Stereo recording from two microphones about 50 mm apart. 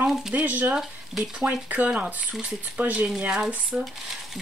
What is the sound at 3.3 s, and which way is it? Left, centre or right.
Speech, centre.